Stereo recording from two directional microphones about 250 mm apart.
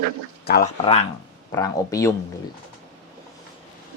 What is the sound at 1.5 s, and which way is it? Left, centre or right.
Speech, centre.